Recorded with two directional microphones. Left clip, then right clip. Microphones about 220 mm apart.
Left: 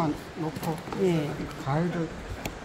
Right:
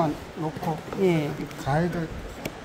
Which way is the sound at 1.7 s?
45° right (ahead or behind).